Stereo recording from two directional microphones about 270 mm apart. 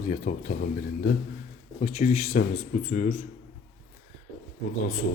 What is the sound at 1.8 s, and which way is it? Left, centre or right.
Speech, left.